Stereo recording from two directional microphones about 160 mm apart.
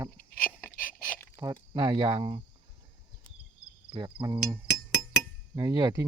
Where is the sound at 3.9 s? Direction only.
30° right (ahead or behind).